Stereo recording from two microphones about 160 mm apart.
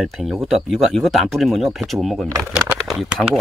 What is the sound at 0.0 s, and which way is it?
Speech, centre (ahead or behind).